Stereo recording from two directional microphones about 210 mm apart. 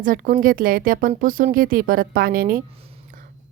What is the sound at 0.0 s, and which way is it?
Speech, 40° right (ahead or behind).